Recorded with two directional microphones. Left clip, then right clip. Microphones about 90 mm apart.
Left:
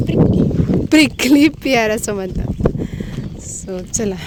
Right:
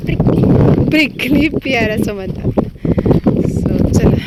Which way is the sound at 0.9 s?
75° left (ahead or behind).